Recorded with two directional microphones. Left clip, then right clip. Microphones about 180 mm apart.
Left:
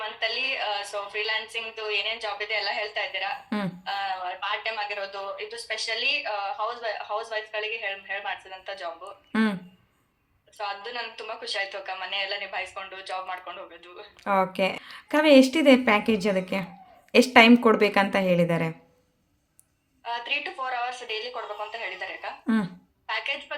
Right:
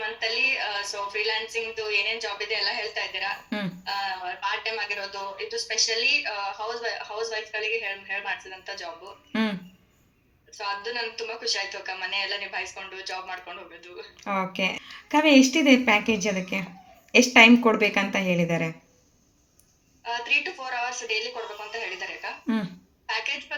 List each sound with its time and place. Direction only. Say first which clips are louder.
0.0 s a woman's voice: right 3 dB; 10° left (ahead or behind)
9.3 s speech: left 1 dB; 35° left (ahead or behind)
10.6 s a woman's voice: right 2 dB; 5° left (ahead or behind)
14.2 s a woman's voice: left 3 dB; 30° left (ahead or behind)
20.1 s speech: right 4 dB; 10° left (ahead or behind)